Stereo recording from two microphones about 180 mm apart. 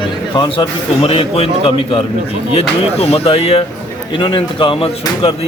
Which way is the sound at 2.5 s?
35° left (ahead or behind).